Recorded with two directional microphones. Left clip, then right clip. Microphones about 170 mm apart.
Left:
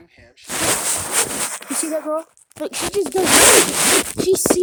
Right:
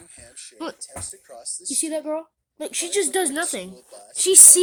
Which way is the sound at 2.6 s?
5° left (ahead or behind).